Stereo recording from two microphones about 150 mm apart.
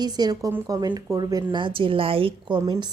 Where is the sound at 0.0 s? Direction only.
25° right (ahead or behind).